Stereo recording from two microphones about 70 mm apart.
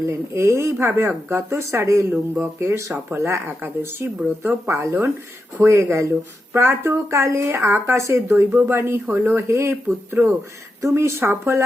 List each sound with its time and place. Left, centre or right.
0.3 s speech: right
2.0 s speech: right
2.6 s speech: right
7.5 s speech: right
7.9 s speech: right
10.8 s speech: right